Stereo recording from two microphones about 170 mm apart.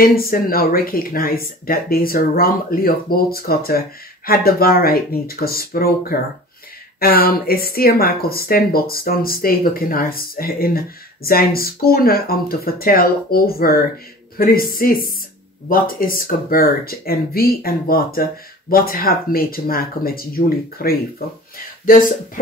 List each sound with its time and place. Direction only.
0.0 s speech: 60° left (ahead or behind)